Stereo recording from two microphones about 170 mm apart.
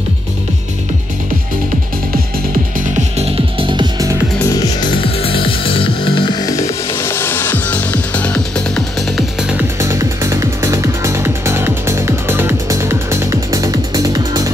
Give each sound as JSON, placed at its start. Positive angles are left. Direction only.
{"t": 3.2, "sound": "music", "side_deg": -35}
{"t": 4.5, "sound": "music", "side_deg": 25}
{"t": 9.8, "sound": "music", "side_deg": -15}